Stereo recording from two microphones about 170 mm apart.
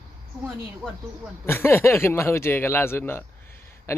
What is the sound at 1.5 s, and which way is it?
Speech, 15° left (ahead or behind).